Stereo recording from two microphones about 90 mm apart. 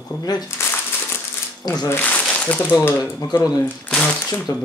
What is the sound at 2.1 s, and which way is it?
Speech, 10° left (ahead or behind).